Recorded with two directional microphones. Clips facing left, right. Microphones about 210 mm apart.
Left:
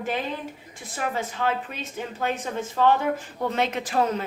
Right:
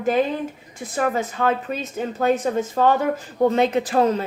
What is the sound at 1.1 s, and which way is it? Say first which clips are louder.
Speech: right 5 dB; 45° right (ahead or behind).